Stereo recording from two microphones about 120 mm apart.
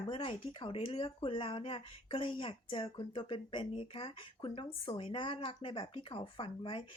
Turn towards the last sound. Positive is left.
turn(degrees=45)  # may be behind; listen again after turning